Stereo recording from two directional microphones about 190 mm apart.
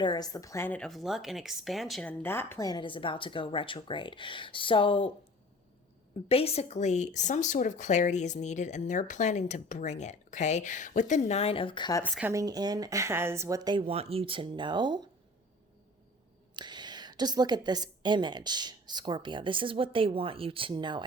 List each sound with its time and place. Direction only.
0.0 s speech: 20° left (ahead or behind)
6.2 s speech: 30° left (ahead or behind)
12.0 s a woman's voice: 10° right (ahead or behind)
16.6 s a woman's voice: 25° right (ahead or behind)